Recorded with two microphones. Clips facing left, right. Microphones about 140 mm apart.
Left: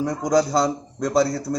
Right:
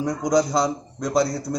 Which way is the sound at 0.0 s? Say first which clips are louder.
Left 1 dB; centre (ahead or behind).